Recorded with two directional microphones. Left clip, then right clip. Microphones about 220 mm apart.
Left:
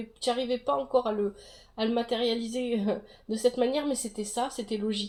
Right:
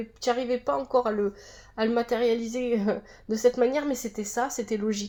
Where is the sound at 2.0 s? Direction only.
10° right (ahead or behind).